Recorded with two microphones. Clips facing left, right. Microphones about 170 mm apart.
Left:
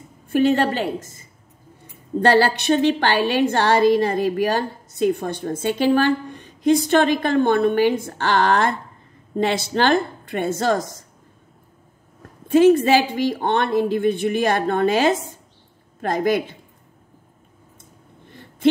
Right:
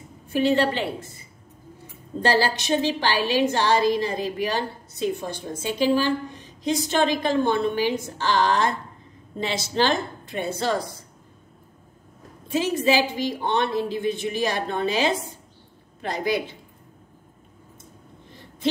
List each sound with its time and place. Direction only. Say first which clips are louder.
0.3 s a woman's voice: left 3 dB; 50° left (ahead or behind)
2.2 s a woman's voice: left 6 dB; 60° left (ahead or behind)
12.4 s a woman's voice: left 8 dB; 55° left (ahead or behind)